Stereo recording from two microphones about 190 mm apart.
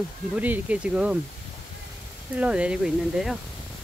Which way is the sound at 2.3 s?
5° right (ahead or behind).